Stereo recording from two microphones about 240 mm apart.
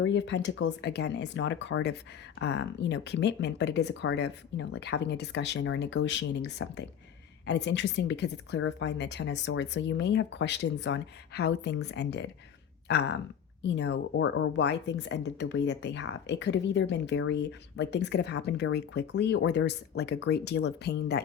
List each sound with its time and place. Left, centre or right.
0.0 s speech: left